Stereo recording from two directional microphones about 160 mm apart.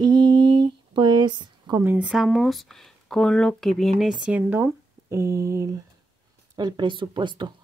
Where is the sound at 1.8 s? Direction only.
10° right (ahead or behind).